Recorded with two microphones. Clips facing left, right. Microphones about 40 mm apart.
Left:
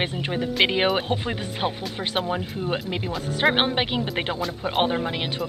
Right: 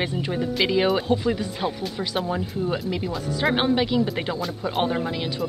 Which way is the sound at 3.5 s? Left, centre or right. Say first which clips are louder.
Right 2 dB; left.